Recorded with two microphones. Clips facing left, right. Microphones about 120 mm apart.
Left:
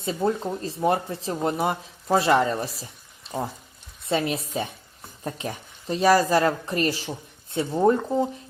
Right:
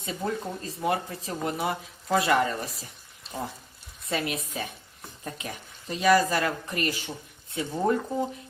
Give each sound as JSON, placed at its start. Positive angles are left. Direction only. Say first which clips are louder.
{"t": 0.0, "sound": "speech", "louder": "left 6 dB", "side_deg": 30}
{"t": 4.1, "sound": "speech", "louder": "left 5 dB", "side_deg": 30}